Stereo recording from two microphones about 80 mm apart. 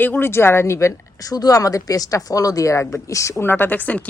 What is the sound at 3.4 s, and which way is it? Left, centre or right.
Speech, left.